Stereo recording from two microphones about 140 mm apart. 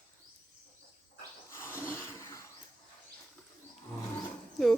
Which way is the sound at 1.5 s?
20° left (ahead or behind).